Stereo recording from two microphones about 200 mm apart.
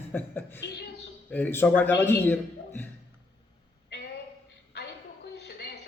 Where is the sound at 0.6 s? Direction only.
55° left (ahead or behind).